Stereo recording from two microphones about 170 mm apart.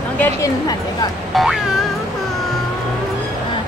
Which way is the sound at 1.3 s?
Centre (ahead or behind).